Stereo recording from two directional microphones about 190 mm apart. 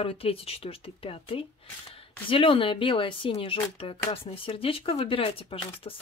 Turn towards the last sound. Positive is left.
turn(degrees=30)  # may be behind; listen again after turning